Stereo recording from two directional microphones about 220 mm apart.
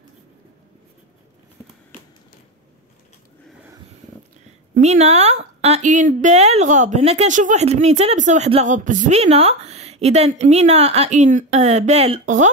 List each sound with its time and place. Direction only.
4.7 s a woman's voice: 30° right (ahead or behind)